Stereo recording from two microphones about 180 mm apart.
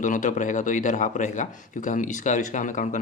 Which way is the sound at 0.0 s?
45° left (ahead or behind).